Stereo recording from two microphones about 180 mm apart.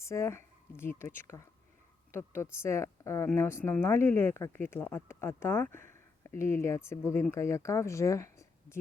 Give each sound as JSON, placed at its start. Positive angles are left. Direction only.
{"t": 0.0, "sound": "a woman's voice", "side_deg": 15}